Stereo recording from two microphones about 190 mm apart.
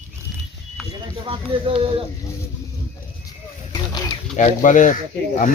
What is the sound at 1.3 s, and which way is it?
Speech, 30° right (ahead or behind).